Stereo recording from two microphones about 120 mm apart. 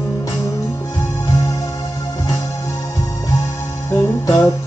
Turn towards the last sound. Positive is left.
turn(degrees=30)  # may be behind; listen again after turning